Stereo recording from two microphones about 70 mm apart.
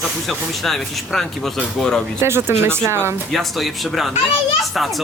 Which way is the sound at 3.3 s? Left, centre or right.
Centre.